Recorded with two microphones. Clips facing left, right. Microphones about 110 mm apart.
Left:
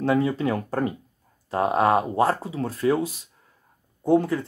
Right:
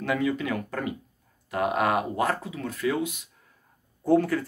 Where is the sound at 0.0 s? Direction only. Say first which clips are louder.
Left 5 dB; 30° left (ahead or behind).